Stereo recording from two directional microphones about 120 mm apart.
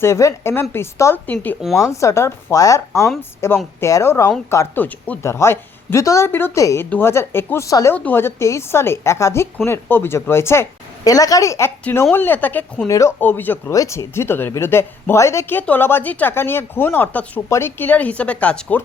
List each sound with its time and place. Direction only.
0.0 s speech: 25° left (ahead or behind)
1.8 s speech: 25° left (ahead or behind)
7.9 s speech: 15° left (ahead or behind)
12.9 s speech: 25° left (ahead or behind)
13.1 s speech: 15° left (ahead or behind)
13.7 s speech: 30° left (ahead or behind); by 18.8 s 10° left (ahead or behind)